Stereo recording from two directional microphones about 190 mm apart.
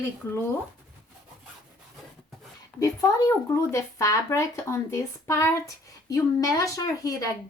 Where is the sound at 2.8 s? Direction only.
20° left (ahead or behind).